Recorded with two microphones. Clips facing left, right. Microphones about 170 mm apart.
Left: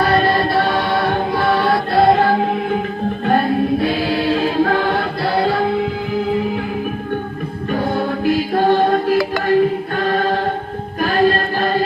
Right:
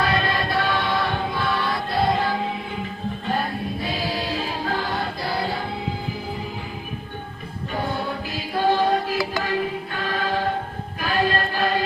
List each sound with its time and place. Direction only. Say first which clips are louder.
0.0 s music: left 8 dB; 45° left (ahead or behind)
3.2 s choir: left 11 dB; 60° left (ahead or behind)
8.2 s chant: left 10 dB; 50° left (ahead or behind)
11.0 s music: left 7 dB; 45° left (ahead or behind)